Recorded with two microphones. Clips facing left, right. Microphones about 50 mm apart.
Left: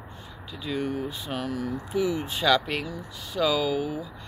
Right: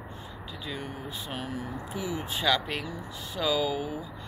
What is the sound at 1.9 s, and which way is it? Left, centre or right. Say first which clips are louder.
Speech: left 8 dB; centre.